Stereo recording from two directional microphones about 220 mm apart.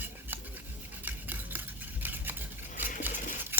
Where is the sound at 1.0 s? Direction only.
10° right (ahead or behind).